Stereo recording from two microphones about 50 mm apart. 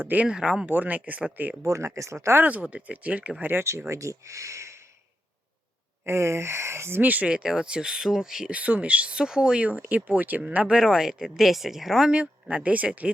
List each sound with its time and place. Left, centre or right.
0.3 s speech: centre
0.6 s speech: right
1.6 s speech: right
2.3 s speech: right
3.6 s speech: right
6.1 s speech: right
7.0 s speech: right
7.3 s speech: centre
8.4 s speech: right
9.6 s speech: right
10.7 s speech: centre
12.1 s speech: right